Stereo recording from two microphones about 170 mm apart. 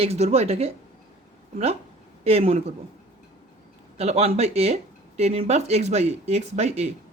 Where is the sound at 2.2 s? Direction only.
35° right (ahead or behind).